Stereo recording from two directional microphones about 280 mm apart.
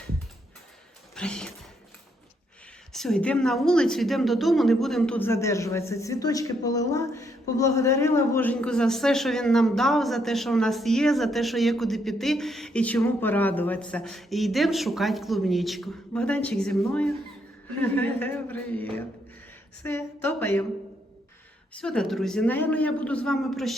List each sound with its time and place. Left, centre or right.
1.1 s a sound: centre
2.9 s a woman's voice: centre
21.7 s a woman's voice: centre